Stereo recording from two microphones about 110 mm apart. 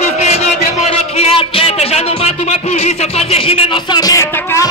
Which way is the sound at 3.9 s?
35° left (ahead or behind).